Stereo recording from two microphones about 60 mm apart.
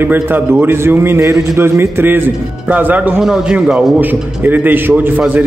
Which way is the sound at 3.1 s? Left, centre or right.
Centre.